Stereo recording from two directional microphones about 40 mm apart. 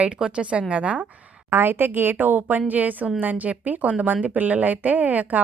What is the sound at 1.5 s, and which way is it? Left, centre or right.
A woman's voice, right.